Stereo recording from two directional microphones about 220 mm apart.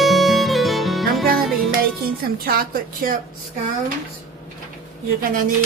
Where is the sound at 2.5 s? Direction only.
40° right (ahead or behind).